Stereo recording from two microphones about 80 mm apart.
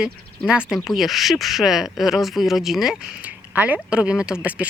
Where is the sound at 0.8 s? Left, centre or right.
Centre.